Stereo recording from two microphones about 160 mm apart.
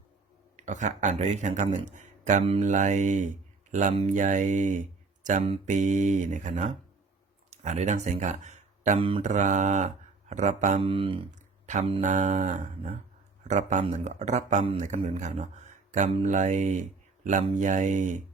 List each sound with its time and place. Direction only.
0.5 s speech: 50° right (ahead or behind)
9.0 s speech: 35° right (ahead or behind)
9.2 s speech: 50° right (ahead or behind)
10.8 s speech: 35° right (ahead or behind)
11.3 s a sound: 50° right (ahead or behind)
13.5 s speech: 50° right (ahead or behind)